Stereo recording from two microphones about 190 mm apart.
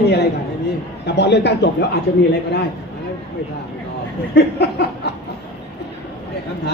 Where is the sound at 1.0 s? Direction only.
60° left (ahead or behind).